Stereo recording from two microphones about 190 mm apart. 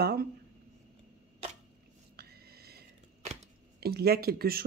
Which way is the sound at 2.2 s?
55° right (ahead or behind).